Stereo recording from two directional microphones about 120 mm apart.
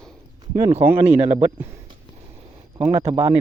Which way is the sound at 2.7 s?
60° right (ahead or behind).